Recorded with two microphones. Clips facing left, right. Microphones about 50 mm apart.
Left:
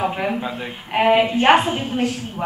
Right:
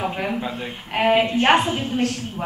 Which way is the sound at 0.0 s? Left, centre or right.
Centre.